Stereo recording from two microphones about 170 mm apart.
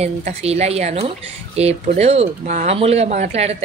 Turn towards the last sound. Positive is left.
turn(degrees=-40)  # may be behind; listen again after turning